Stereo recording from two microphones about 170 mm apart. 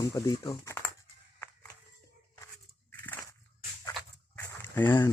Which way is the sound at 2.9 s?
10° left (ahead or behind).